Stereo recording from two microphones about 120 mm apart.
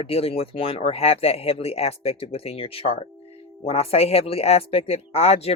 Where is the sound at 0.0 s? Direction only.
55° left (ahead or behind).